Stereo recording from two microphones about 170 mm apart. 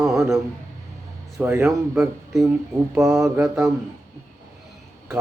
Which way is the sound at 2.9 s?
15° right (ahead or behind).